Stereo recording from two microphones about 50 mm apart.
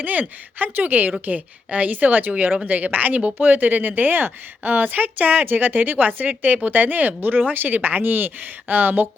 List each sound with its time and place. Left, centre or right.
0.0 s a woman's voice: right